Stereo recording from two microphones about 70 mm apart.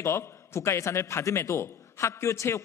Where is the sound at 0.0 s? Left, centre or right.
Left.